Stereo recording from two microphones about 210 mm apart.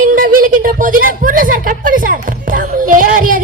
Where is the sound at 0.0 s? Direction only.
40° right (ahead or behind).